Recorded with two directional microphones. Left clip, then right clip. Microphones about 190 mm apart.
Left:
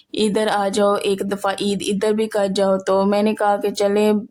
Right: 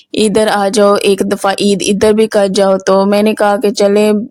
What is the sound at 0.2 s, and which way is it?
A woman's voice, 35° right (ahead or behind).